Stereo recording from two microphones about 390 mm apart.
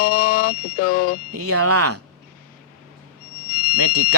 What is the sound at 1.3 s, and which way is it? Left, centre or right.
Speech, right.